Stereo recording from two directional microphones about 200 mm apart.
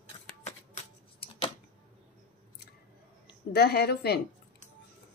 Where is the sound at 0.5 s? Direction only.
30° left (ahead or behind).